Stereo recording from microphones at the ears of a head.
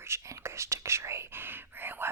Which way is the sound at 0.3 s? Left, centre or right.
Right.